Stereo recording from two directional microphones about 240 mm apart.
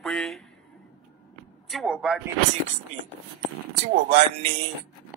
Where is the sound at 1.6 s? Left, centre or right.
Centre.